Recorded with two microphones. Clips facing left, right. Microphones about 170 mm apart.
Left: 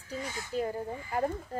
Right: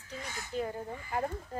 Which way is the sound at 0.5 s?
Centre (ahead or behind).